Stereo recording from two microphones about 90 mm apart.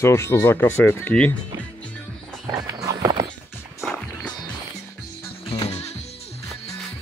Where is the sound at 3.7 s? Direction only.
5° left (ahead or behind).